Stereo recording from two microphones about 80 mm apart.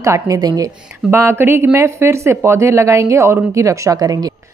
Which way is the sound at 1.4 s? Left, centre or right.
Right.